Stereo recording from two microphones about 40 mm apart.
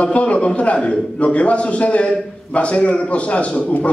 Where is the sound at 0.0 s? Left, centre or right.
Left.